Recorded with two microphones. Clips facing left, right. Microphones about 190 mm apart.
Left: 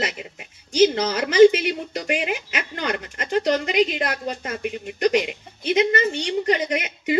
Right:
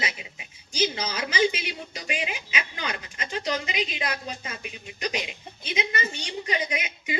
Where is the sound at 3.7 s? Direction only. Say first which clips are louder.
Left 9 dB; 65° left (ahead or behind).